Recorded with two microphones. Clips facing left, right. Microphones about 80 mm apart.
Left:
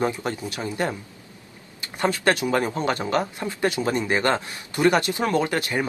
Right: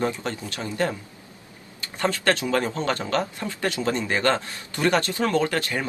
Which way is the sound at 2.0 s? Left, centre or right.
Centre.